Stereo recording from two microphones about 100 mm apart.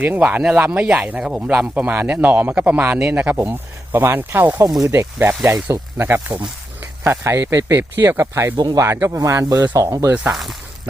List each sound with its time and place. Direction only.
0.0 s speech: 15° right (ahead or behind)
4.4 s speech: 35° right (ahead or behind)
8.5 s speech: 45° right (ahead or behind)
8.8 s speech: 30° right (ahead or behind)